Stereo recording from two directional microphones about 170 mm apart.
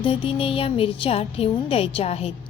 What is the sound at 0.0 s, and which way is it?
A woman's voice, 30° left (ahead or behind).